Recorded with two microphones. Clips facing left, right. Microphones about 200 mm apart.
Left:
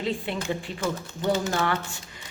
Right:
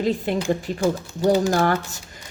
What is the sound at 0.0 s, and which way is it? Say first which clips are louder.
Speech: right 7 dB; 40° right (ahead or behind).